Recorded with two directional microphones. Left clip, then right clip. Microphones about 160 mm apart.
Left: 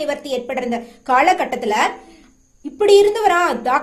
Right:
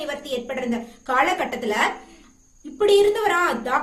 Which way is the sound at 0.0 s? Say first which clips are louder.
Left 6 dB; 40° left (ahead or behind).